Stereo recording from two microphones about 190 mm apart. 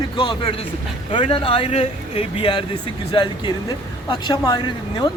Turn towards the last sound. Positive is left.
turn(degrees=20)  # may be behind; listen again after turning